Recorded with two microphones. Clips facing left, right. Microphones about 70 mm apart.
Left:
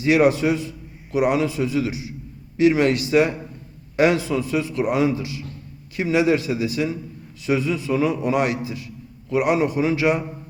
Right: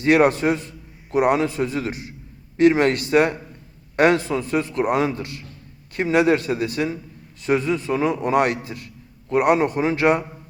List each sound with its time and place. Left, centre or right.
0.0 s a man's voice: right